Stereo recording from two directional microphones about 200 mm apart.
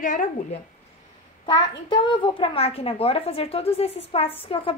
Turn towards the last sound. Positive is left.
turn(degrees=25)  # may be behind; listen again after turning